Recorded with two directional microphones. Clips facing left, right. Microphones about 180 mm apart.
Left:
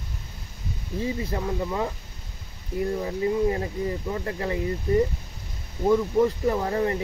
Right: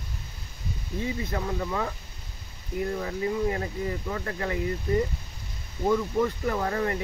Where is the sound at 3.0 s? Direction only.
25° left (ahead or behind).